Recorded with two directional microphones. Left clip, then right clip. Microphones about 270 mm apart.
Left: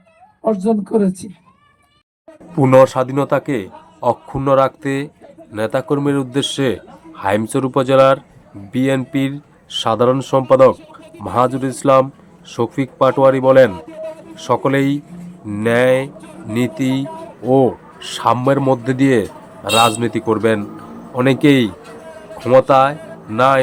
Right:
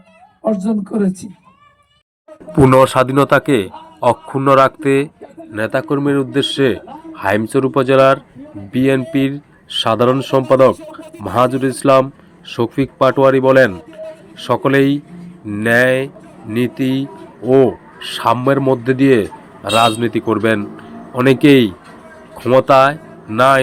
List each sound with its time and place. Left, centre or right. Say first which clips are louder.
0.4 s a man's voice: left 2 dB; centre
2.6 s a man's voice: even; centre
11.0 s bird: right 3 dB; centre
11.3 s a man's voice: right 2 dB; centre
13.7 s a sound: left 2 dB; centre
14.3 s a man's voice: right 2 dB; centre